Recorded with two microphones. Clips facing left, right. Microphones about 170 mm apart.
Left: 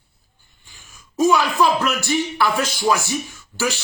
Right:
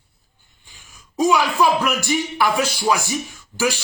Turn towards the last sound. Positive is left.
turn(degrees=-10)  # may be behind; listen again after turning